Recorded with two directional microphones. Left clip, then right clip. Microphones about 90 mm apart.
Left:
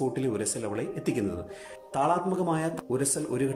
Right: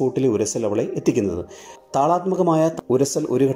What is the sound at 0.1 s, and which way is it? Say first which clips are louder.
Speech: right 10 dB; 35° right (ahead or behind).